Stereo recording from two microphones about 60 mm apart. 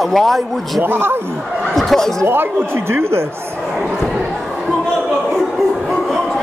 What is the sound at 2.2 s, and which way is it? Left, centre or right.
Speech, right.